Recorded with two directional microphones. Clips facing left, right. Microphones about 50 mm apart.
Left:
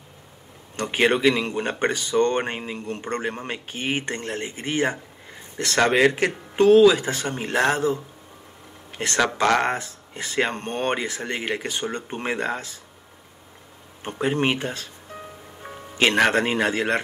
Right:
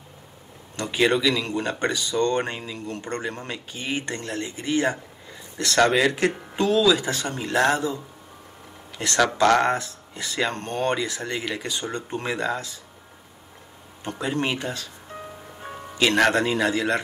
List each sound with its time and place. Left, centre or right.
0.7 s speech: left
14.0 s speech: left
16.3 s speech: left